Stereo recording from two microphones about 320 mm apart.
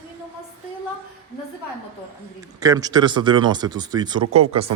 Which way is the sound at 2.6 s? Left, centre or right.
Centre.